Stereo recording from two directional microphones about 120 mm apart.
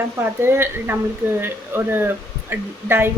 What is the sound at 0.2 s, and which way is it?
A woman's voice, 20° right (ahead or behind).